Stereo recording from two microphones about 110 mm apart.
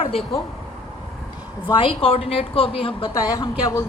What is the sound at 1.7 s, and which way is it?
A woman's voice, 50° left (ahead or behind).